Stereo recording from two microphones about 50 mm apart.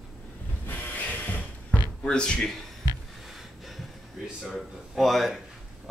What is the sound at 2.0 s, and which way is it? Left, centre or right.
Speech, centre.